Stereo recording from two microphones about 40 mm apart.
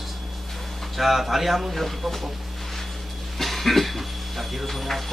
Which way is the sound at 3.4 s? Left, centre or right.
Centre.